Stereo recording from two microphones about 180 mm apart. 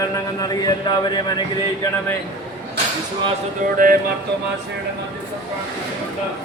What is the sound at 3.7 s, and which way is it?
Music, 50° right (ahead or behind).